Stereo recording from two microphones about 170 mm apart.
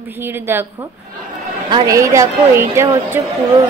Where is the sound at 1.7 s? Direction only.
20° right (ahead or behind).